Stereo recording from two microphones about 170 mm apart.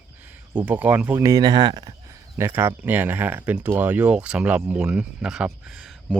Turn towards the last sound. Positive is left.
turn(degrees=-5)  # may be behind; listen again after turning